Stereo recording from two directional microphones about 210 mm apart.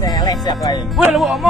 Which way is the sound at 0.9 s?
Centre (ahead or behind).